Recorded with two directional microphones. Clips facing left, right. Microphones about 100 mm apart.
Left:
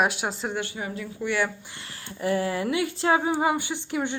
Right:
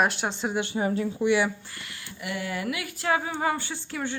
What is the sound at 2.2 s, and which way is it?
Speech, 35° left (ahead or behind).